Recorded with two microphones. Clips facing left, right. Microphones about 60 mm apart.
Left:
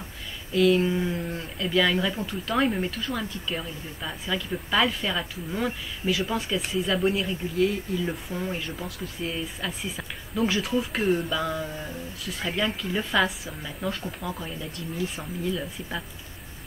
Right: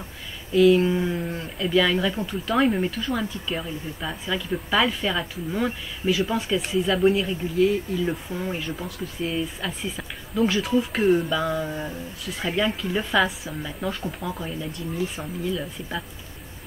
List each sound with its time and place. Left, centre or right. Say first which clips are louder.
0.5 s speech: right 4 dB; centre
11.6 s a sound: right 4 dB; centre
12.4 s speech: right 3 dB; centre